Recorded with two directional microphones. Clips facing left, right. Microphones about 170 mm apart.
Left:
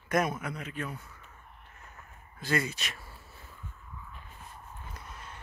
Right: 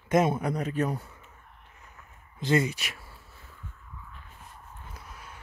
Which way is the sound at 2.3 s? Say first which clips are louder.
Right 6 dB; 20° right (ahead or behind).